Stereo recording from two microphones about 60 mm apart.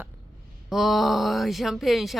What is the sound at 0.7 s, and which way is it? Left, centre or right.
Speech, centre.